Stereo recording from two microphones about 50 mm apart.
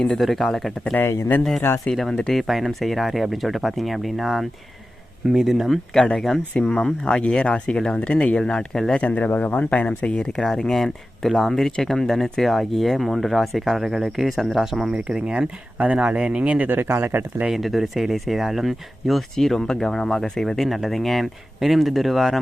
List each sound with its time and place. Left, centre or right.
0.0 s speech: centre
1.0 s speech: left
2.3 s speech: centre
5.9 s speech: centre; by 8.4 s left
8.4 s speech: centre
9.0 s speech: left
10.3 s speech: centre
14.9 s speech: centre
16.6 s speech: right
17.4 s speech: centre